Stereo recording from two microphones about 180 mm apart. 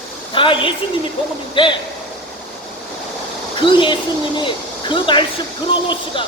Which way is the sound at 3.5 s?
25° left (ahead or behind).